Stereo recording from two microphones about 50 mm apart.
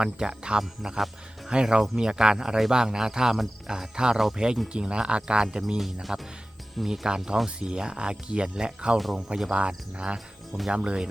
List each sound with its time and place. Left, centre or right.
0.0 s speech: centre
5.8 s speech: centre; by 11.1 s right